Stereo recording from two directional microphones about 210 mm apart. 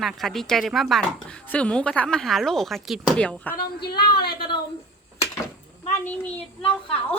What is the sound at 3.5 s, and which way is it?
Speech, 45° left (ahead or behind).